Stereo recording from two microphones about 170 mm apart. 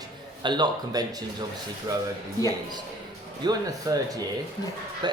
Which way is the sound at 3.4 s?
25° right (ahead or behind).